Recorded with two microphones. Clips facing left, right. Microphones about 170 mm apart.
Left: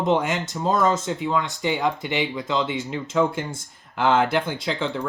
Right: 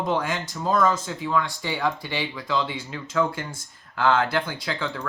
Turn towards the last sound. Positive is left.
turn(degrees=25)  # may be behind; listen again after turning